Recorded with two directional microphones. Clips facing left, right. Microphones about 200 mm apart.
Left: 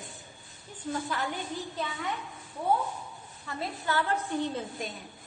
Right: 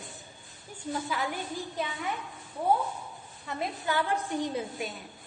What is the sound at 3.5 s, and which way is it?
A woman's voice, 15° right (ahead or behind).